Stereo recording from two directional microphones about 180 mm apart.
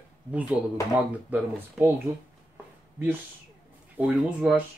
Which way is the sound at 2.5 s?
10° right (ahead or behind).